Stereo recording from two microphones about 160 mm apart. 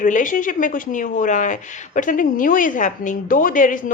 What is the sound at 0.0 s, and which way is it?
A woman's voice, 55° left (ahead or behind).